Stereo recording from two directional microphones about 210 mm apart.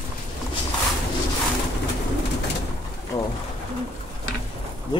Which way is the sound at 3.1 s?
15° left (ahead or behind).